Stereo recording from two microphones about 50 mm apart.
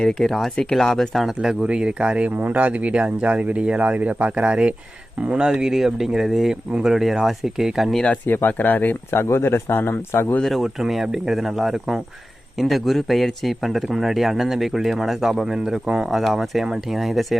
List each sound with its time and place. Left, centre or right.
0.0 s a man's voice: centre
1.6 s a man's voice: centre
8.3 s speech: left
9.1 s a man's voice: left
10.4 s a man's voice: centre
16.1 s a man's voice: centre